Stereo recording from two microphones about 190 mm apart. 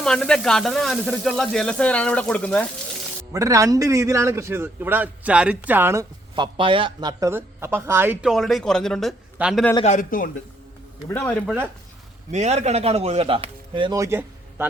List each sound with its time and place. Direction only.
0.0 s speech: 5° left (ahead or behind)
3.3 s a man's voice: 15° right (ahead or behind); by 9.6 s centre (ahead or behind)
9.8 s speech: 40° left (ahead or behind)
11.4 s a man's voice: 10° right (ahead or behind)
12.3 s speech: 35° right (ahead or behind); by 14.7 s 10° right (ahead or behind)